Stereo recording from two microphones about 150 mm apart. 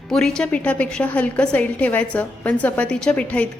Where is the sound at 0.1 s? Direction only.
5° left (ahead or behind).